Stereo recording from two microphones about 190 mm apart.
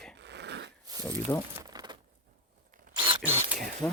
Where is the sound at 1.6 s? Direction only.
20° right (ahead or behind).